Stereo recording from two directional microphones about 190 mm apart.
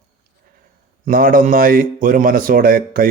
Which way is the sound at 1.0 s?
50° right (ahead or behind).